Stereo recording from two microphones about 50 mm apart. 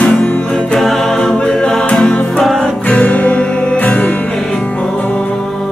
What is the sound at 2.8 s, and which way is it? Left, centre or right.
Music, left.